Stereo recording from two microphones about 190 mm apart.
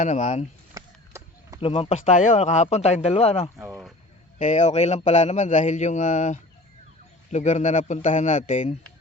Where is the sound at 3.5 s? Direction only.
10° right (ahead or behind).